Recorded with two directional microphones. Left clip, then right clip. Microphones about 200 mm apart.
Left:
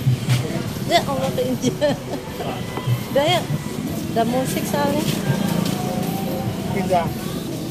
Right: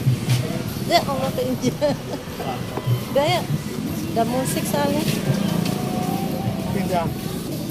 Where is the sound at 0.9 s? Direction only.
Centre (ahead or behind).